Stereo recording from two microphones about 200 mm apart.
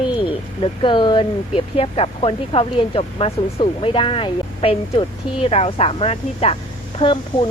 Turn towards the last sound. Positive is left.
turn(degrees=25)  # may be behind; listen again after turning